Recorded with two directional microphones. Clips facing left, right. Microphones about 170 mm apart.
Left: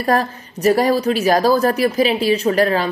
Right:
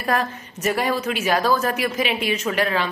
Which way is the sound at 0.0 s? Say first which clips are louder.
Left 5 dB; 35° left (ahead or behind).